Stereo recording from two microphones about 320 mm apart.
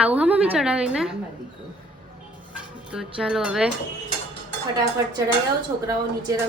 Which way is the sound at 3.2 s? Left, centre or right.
Centre.